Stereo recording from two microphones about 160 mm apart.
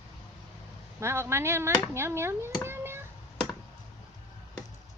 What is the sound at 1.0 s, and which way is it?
Speech, 15° right (ahead or behind).